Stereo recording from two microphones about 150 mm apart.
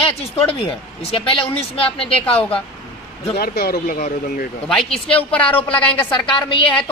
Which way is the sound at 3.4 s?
90° left.